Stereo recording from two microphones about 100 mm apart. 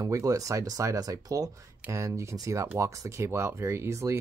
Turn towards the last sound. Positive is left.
turn(degrees=-30)  # may be behind; listen again after turning